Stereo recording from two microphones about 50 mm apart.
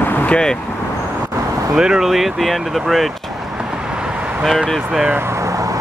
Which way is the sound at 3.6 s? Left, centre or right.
Centre.